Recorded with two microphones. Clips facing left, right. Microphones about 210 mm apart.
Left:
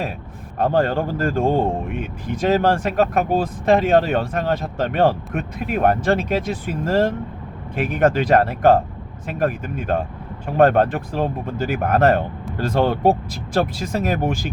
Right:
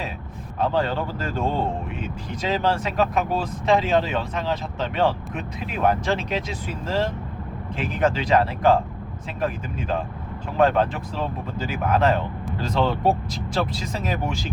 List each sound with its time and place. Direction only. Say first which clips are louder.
0.6 s speech: left 5 dB; 50° left (ahead or behind)
9.4 s speech: left 5 dB; 60° left (ahead or behind)